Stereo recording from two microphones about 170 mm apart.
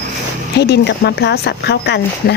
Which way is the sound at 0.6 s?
75° left (ahead or behind).